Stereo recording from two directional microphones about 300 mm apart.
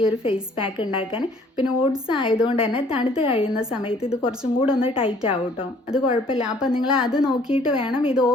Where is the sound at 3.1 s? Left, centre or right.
Centre.